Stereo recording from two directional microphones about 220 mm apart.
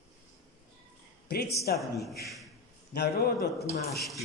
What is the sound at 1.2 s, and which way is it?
Speech, 45° left (ahead or behind).